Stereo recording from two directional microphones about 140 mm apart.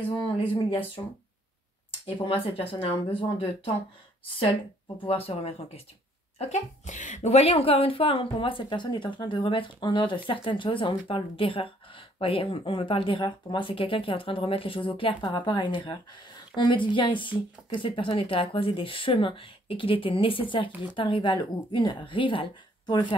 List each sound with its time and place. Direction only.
0.7 s a woman's voice: 40° left (ahead or behind)
2.5 s a woman's voice: 40° left (ahead or behind)
5.0 s speech: 45° left (ahead or behind)
6.3 s a woman's voice: 55° left (ahead or behind); by 23.0 s 35° left (ahead or behind)